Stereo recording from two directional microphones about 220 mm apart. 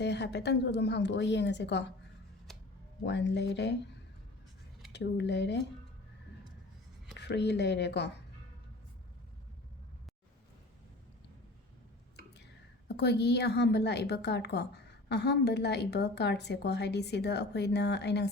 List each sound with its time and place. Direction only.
0.0 s a woman's voice: 50° left (ahead or behind)
2.5 s music: centre (ahead or behind)
3.1 s a woman's voice: 50° left (ahead or behind)
4.9 s a woman's voice: 50° left (ahead or behind)
7.2 s a woman's voice: 50° left (ahead or behind)
12.9 s a woman's voice: 50° left (ahead or behind)